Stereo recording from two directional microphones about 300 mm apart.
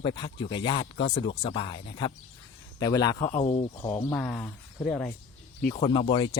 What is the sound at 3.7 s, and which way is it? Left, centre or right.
Speech, centre.